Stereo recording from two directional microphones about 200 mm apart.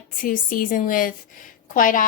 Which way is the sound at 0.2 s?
45° left (ahead or behind).